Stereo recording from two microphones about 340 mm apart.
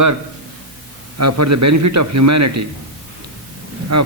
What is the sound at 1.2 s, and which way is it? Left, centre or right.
A man's voice, right.